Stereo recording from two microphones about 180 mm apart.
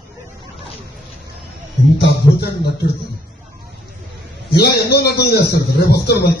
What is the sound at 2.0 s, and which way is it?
Speech, 65° left (ahead or behind).